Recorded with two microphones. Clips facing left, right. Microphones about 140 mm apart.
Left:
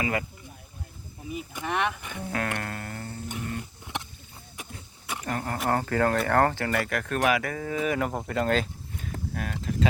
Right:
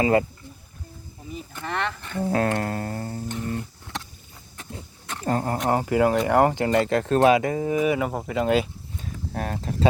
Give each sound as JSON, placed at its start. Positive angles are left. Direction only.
{"t": 0.0, "sound": "music", "side_deg": -30}
{"t": 1.3, "sound": "speech", "side_deg": 15}
{"t": 2.2, "sound": "music", "side_deg": -30}
{"t": 3.6, "sound": "a sound", "side_deg": 15}
{"t": 5.2, "sound": "speech", "side_deg": -30}
{"t": 5.6, "sound": "speech", "side_deg": -15}
{"t": 9.3, "sound": "music", "side_deg": -35}